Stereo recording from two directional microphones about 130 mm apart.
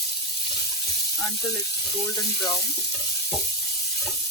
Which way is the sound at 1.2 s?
25° left (ahead or behind).